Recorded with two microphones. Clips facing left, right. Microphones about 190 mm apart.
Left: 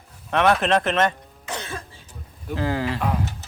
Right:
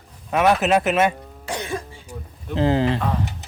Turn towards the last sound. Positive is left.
turn(degrees=10)  # may be behind; listen again after turning